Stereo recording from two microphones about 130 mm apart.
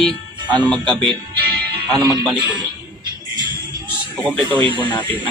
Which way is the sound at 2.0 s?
30° right (ahead or behind).